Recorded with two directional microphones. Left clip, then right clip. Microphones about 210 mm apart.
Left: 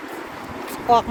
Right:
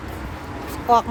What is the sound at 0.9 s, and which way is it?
Speech, 15° right (ahead or behind).